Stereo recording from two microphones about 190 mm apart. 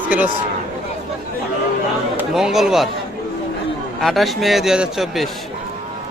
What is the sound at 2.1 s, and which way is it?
Speech, centre (ahead or behind).